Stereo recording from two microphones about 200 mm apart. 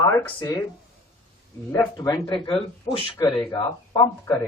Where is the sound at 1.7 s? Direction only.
15° left (ahead or behind).